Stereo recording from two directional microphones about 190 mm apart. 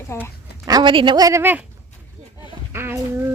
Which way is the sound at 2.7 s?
10° right (ahead or behind).